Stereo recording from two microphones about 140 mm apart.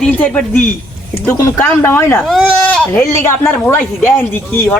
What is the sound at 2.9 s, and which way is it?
Speech, 25° left (ahead or behind).